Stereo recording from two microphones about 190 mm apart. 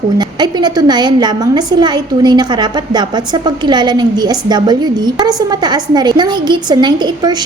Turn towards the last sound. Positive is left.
turn(degrees=-20)  # may be behind; listen again after turning